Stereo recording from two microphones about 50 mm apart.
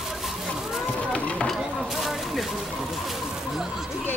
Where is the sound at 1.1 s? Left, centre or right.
Centre.